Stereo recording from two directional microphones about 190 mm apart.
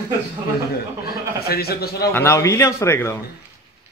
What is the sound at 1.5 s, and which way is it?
Speech, 55° left (ahead or behind).